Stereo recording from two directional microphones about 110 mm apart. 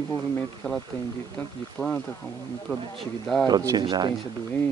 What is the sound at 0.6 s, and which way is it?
Speech, 5° left (ahead or behind).